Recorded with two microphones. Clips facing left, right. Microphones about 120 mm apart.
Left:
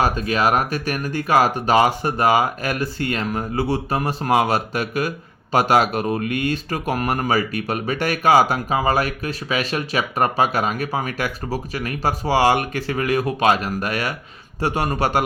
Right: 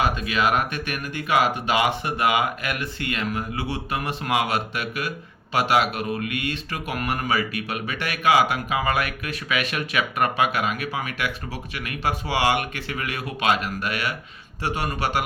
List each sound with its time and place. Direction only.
0.0 s a man's voice: 40° left (ahead or behind)